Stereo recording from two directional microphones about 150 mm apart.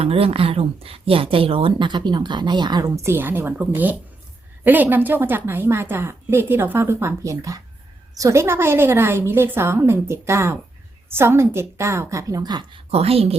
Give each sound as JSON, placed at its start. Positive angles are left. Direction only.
{"t": 0.0, "sound": "a woman's voice", "side_deg": -40}
{"t": 12.9, "sound": "speech", "side_deg": -40}